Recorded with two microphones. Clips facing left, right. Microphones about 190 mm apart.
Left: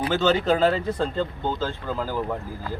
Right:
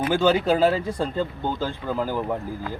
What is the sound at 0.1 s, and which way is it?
A man's voice, 10° right (ahead or behind).